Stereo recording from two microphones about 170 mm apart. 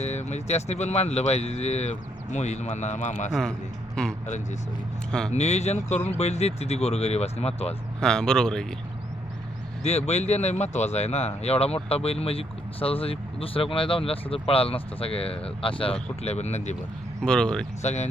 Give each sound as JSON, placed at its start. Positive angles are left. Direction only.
{"t": 0.0, "sound": "speech", "side_deg": 40}
{"t": 4.0, "sound": "speech", "side_deg": 5}
{"t": 5.3, "sound": "speech", "side_deg": 40}
{"t": 8.0, "sound": "speech", "side_deg": 5}
{"t": 9.8, "sound": "speech", "side_deg": 40}
{"t": 17.2, "sound": "speech", "side_deg": 5}
{"t": 17.8, "sound": "speech", "side_deg": 40}